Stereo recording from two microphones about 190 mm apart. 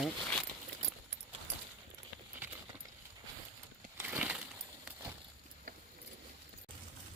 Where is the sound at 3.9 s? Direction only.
10° right (ahead or behind).